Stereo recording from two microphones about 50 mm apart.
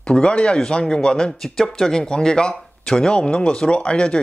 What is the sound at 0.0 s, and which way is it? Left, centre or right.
Speech, centre.